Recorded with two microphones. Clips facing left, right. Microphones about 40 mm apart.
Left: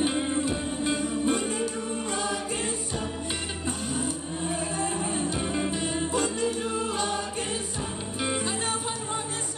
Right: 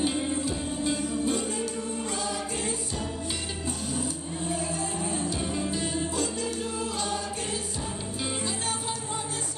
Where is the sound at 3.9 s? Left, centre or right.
Left.